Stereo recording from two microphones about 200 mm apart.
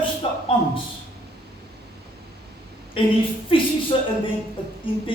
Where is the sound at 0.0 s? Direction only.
25° left (ahead or behind).